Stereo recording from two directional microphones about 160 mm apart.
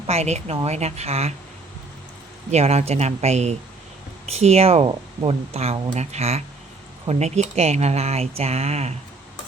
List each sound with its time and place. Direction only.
0.1 s speech: 40° right (ahead or behind)
2.5 s speech: 40° right (ahead or behind)